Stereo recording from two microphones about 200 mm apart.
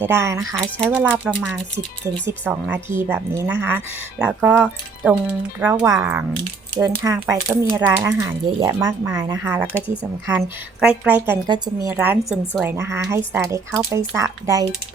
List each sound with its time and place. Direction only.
0.0 s speech: 15° right (ahead or behind)
1.3 s speech: centre (ahead or behind)
2.5 s speech: 10° right (ahead or behind)
11.4 s speech: 20° right (ahead or behind)
11.9 s speech: 5° right (ahead or behind)